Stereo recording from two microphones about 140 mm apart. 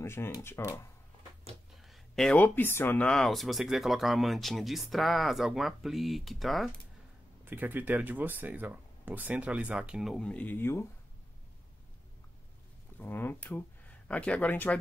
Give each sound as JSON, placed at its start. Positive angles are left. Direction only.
{"t": 0.0, "sound": "speech", "side_deg": 20}
{"t": 1.8, "sound": "speech", "side_deg": 0}
{"t": 7.4, "sound": "speech", "side_deg": -10}
{"t": 13.0, "sound": "speech", "side_deg": 15}